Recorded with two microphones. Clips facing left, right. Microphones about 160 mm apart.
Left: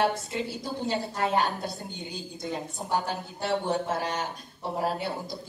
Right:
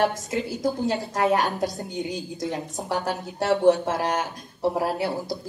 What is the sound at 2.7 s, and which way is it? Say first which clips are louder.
A man's voice: right 2 dB; 85° right.